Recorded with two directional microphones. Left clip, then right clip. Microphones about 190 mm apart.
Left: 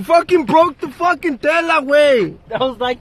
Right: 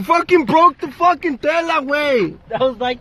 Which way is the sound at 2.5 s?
25° left (ahead or behind).